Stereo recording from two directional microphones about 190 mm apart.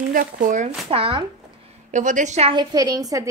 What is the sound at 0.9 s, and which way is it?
Speech, 30° right (ahead or behind).